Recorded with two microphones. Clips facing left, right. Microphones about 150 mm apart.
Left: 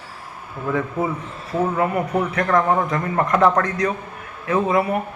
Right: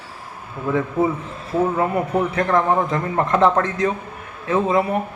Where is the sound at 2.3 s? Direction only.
25° right (ahead or behind).